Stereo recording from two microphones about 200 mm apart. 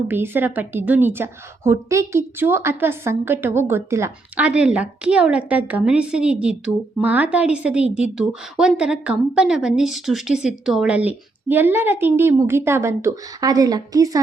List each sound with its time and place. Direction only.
0.1 s a woman's voice: 10° right (ahead or behind)